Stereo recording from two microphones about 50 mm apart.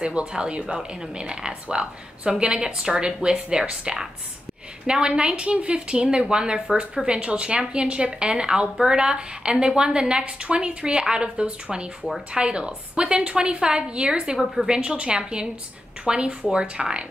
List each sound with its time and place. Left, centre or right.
0.0 s a woman's voice: centre
14.4 s a woman's voice: centre
14.7 s a woman's voice: centre